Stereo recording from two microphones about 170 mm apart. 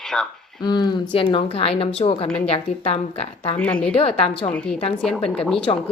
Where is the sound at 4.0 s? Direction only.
35° left (ahead or behind).